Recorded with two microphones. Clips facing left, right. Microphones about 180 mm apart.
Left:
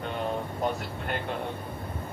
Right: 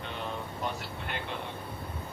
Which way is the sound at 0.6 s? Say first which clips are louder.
Left 5 dB; 45° left (ahead or behind).